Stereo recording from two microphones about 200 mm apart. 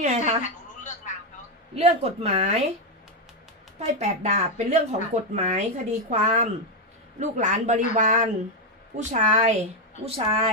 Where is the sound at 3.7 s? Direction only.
35° right (ahead or behind).